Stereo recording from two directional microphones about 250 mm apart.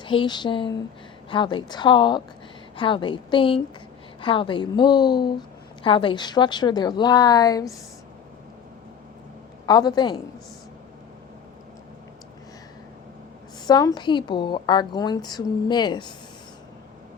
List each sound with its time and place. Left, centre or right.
0.0 s a woman's voice: centre
9.6 s a woman's voice: centre
13.7 s a woman's voice: centre